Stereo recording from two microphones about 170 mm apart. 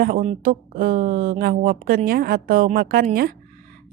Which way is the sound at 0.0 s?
60° right (ahead or behind).